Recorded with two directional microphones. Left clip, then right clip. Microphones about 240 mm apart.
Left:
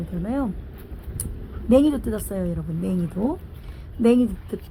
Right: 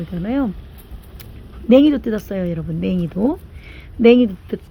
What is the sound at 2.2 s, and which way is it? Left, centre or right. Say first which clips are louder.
A woman's voice: right 5 dB; centre.